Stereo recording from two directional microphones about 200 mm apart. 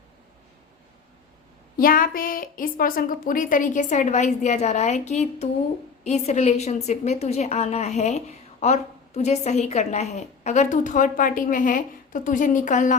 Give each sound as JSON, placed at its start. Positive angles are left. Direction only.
{"t": 1.7, "sound": "a woman's voice", "side_deg": 45}